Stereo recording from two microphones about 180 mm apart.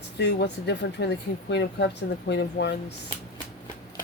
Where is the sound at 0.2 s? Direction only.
70° left (ahead or behind).